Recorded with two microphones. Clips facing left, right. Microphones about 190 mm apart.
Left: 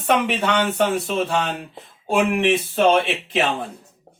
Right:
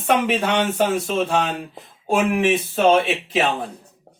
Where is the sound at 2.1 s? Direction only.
Centre (ahead or behind).